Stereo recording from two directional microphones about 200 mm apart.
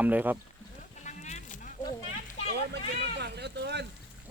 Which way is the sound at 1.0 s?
35° left (ahead or behind).